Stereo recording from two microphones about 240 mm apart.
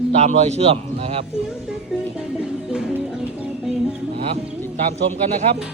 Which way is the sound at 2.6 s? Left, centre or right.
Centre.